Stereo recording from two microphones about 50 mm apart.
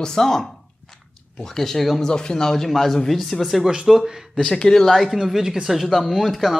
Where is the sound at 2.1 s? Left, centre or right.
Centre.